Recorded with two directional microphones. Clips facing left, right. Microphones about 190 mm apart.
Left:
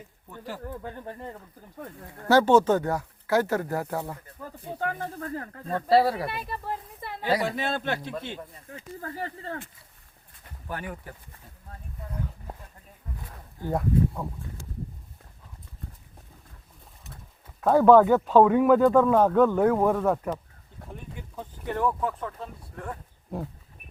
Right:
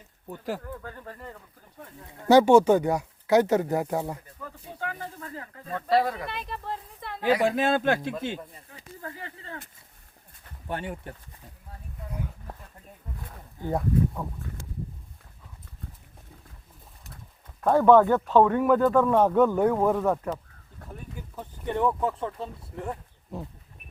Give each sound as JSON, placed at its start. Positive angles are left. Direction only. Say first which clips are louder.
{"t": 0.3, "sound": "a man's voice", "louder": "right 6 dB", "side_deg": -45}
{"t": 0.6, "sound": "speech", "louder": "left 3 dB", "side_deg": 25}
{"t": 2.2, "sound": "speech", "louder": "right 3 dB", "side_deg": -15}
{"t": 4.7, "sound": "speech", "louder": "left 5 dB", "side_deg": 45}
{"t": 6.2, "sound": "speech", "louder": "left 2 dB", "side_deg": 10}
{"t": 7.7, "sound": "a man's voice", "louder": "right 6 dB", "side_deg": -50}
{"t": 8.1, "sound": "speech", "louder": "right 3 dB", "side_deg": -5}
{"t": 9.0, "sound": "speech", "louder": "left 4 dB", "side_deg": 40}
{"t": 10.7, "sound": "speech", "louder": "right 2 dB", "side_deg": -25}
{"t": 13.7, "sound": "speech", "louder": "even", "side_deg": 5}
{"t": 17.6, "sound": "speech", "louder": "left 1 dB", "side_deg": 5}
{"t": 21.8, "sound": "speech", "louder": "right 2 dB", "side_deg": -25}